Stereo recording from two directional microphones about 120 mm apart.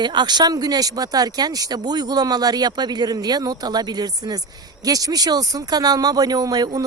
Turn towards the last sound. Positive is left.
turn(degrees=-30)  # may be behind; listen again after turning